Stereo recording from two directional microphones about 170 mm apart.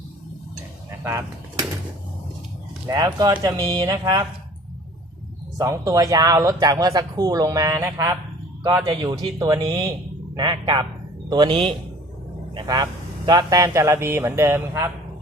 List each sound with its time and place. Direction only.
0.9 s a sound: 15° right (ahead or behind)
2.9 s speech: 25° right (ahead or behind)
5.5 s speech: 20° right (ahead or behind)